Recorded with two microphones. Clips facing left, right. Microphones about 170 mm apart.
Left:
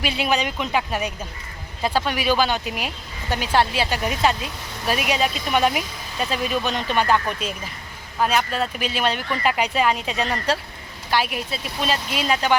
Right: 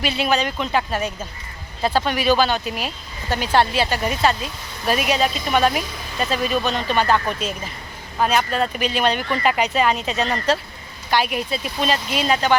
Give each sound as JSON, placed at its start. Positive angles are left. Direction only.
{"t": 0.0, "sound": "speech", "side_deg": 10}